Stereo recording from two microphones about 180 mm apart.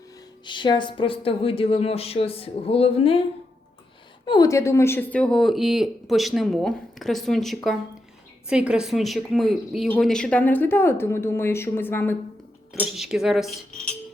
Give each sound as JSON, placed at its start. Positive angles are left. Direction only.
{"t": 0.4, "sound": "speech", "side_deg": 25}
{"t": 4.3, "sound": "speech", "side_deg": 20}
{"t": 12.8, "sound": "speech", "side_deg": -5}